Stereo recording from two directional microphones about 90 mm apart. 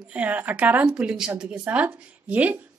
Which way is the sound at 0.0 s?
15° right (ahead or behind).